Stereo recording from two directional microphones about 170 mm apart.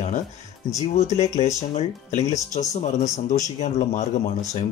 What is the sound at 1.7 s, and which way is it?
Speech, 45° left (ahead or behind).